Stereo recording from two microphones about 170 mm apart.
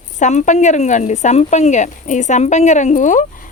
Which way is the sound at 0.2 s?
45° left (ahead or behind).